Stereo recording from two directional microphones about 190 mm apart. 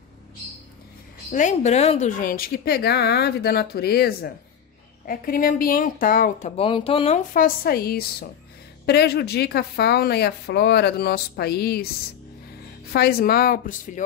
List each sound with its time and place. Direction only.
1.3 s speech: 40° left (ahead or behind)
6.5 s speech: 30° left (ahead or behind)
7.3 s speech: 50° left (ahead or behind)
12.9 s speech: 55° left (ahead or behind)